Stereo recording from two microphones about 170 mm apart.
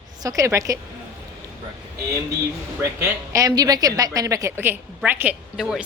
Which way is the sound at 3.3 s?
20° right (ahead or behind).